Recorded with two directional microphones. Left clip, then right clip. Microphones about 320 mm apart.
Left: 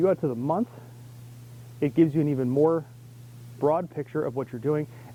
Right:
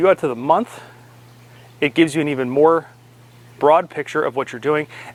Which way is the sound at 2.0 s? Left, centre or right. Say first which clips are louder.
Right 5 dB; centre.